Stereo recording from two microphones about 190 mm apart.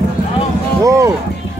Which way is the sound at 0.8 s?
15° right (ahead or behind).